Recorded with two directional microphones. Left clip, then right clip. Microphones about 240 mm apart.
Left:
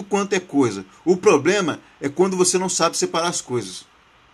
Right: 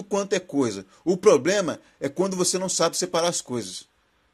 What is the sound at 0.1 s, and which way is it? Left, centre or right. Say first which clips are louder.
Speech: left 4 dB; centre.